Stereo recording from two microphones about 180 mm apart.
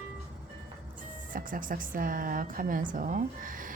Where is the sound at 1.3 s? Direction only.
50° right (ahead or behind).